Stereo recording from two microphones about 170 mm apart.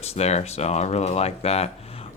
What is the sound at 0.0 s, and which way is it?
Speech, 40° left (ahead or behind).